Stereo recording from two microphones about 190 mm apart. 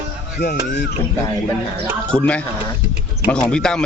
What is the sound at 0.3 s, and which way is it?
Speech, 60° left (ahead or behind).